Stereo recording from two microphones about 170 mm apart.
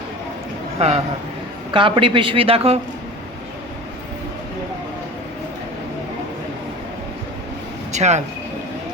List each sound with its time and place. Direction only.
0.8 s a man's voice: 40° right (ahead or behind)
7.9 s speech: 40° right (ahead or behind)